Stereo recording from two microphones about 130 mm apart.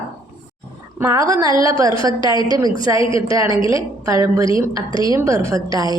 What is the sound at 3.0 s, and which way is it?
Speech, 40° left (ahead or behind).